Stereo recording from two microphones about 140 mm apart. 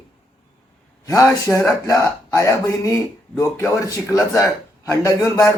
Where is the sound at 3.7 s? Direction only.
20° left (ahead or behind).